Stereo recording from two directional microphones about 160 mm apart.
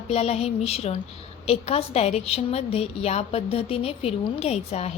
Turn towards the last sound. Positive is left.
turn(degrees=40)  # may be behind; listen again after turning